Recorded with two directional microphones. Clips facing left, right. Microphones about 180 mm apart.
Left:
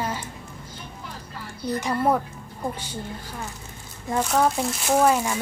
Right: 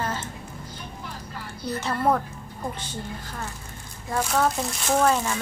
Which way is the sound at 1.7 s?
15° left (ahead or behind).